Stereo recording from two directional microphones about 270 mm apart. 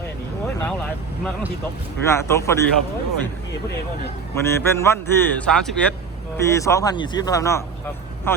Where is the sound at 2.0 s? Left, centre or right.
Centre.